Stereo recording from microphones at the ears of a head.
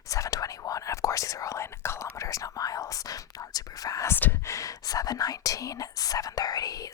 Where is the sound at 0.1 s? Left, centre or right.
Left.